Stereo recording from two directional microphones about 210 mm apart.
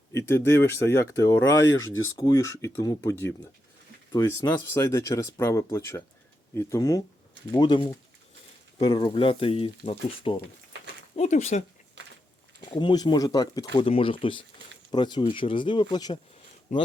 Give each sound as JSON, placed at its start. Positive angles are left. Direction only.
{"t": 0.1, "sound": "speech", "side_deg": 10}
{"t": 12.7, "sound": "speech", "side_deg": 20}
{"t": 16.7, "sound": "speech", "side_deg": 35}